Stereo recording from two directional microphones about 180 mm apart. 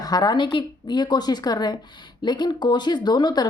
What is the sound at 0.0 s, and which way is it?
A woman's voice, 20° left (ahead or behind).